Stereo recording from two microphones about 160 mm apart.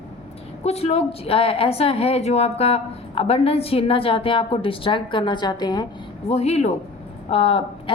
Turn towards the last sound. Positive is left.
turn(degrees=35)  # may be behind; listen again after turning